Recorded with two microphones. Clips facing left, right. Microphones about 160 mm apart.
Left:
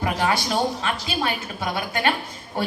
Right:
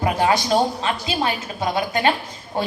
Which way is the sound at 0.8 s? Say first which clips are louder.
Right 3 dB; 25° right (ahead or behind).